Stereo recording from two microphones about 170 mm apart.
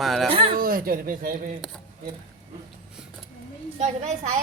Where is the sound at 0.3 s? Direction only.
35° right (ahead or behind).